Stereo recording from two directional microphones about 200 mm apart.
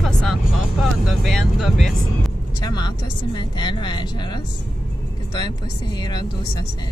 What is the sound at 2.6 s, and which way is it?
Speech, 20° left (ahead or behind).